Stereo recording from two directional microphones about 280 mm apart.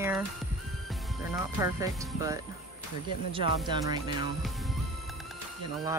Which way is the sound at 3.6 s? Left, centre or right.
Centre.